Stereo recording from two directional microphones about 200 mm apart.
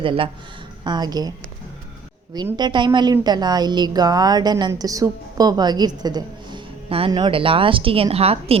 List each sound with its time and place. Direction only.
0.0 s a woman's voice: 25° right (ahead or behind)
2.3 s a woman's voice: 20° right (ahead or behind)